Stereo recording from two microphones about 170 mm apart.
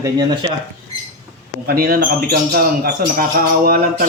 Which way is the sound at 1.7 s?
65° right (ahead or behind).